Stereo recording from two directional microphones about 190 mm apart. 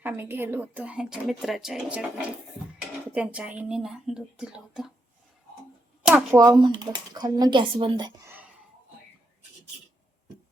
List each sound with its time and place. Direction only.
0.0 s speech: 10° right (ahead or behind)
6.3 s speech: 20° right (ahead or behind)